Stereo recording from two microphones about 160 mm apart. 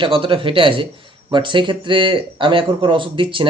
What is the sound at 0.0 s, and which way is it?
Speech, 35° right (ahead or behind).